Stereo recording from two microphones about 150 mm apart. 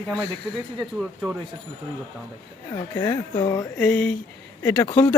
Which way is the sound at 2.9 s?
20° left (ahead or behind).